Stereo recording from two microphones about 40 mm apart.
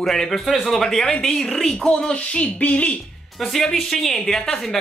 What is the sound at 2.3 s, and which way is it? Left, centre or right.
Speech, left.